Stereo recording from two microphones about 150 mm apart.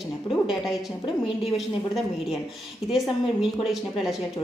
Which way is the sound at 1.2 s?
40° left (ahead or behind).